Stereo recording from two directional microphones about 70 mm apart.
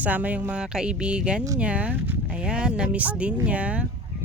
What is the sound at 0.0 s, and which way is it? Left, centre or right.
Speech, right.